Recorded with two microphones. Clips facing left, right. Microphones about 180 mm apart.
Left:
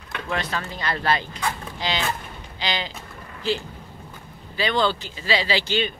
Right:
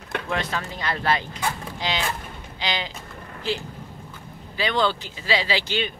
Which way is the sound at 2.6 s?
15° right (ahead or behind).